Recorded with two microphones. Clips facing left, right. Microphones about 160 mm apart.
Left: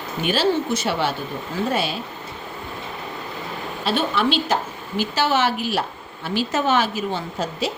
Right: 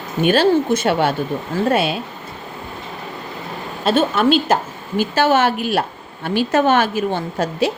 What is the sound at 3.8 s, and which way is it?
A woman's voice, 45° right (ahead or behind).